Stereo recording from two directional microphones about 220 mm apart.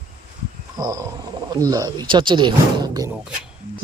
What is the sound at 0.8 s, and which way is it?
Speech, 15° right (ahead or behind).